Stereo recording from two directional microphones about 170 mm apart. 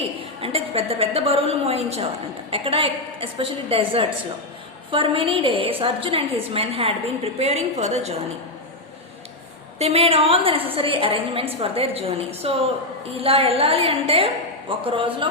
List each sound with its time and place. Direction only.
0.4 s a woman's voice: 35° right (ahead or behind)
9.7 s a woman's voice: 40° right (ahead or behind)